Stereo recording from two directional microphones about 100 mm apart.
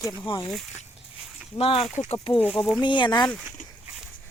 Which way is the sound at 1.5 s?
75° left (ahead or behind).